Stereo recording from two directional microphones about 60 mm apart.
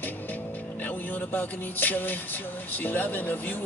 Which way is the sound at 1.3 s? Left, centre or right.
Left.